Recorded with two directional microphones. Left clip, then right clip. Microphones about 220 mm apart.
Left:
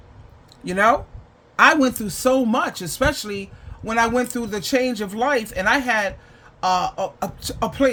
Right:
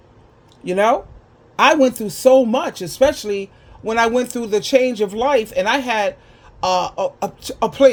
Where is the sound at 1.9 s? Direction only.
10° left (ahead or behind).